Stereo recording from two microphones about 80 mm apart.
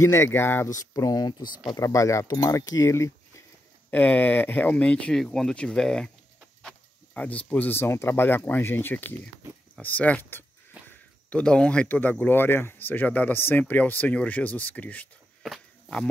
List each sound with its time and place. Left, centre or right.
0.0 s speech: left
0.7 s speech: left
3.9 s speech: left
5.1 s speech: centre
7.2 s speech: centre
10.8 s a sound: centre
11.2 s speech: centre
15.4 s walk: centre